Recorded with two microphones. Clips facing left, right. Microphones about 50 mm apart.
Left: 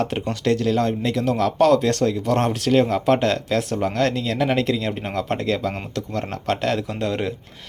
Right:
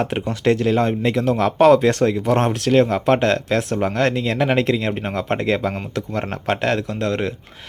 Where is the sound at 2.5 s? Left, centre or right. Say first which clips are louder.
Right 2 dB; centre.